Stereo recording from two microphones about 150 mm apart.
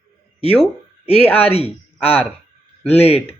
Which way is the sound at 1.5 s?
40° left (ahead or behind).